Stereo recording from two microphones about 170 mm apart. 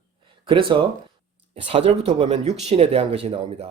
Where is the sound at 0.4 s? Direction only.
30° right (ahead or behind).